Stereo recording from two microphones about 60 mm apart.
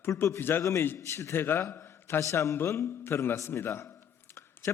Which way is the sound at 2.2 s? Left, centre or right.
Left.